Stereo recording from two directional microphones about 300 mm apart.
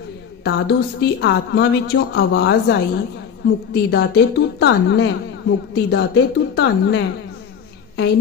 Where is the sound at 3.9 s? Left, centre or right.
Left.